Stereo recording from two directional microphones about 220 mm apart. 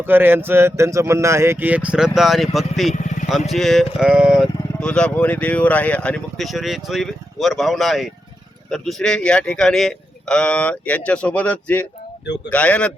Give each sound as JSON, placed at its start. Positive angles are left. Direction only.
{"t": 0.0, "sound": "speech", "side_deg": -10}
{"t": 2.9, "sound": "vehicle", "side_deg": 35}
{"t": 3.2, "sound": "speech", "side_deg": 0}